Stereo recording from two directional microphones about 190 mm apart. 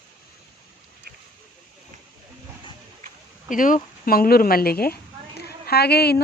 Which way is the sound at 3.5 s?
45° left (ahead or behind).